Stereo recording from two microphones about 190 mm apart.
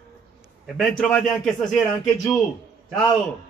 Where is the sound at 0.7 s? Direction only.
5° left (ahead or behind).